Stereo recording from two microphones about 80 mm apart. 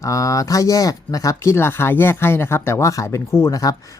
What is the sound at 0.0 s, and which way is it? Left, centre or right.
Speech, left.